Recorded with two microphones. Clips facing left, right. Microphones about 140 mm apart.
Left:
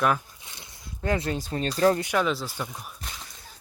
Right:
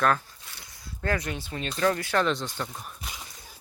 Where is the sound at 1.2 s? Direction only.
35° left (ahead or behind).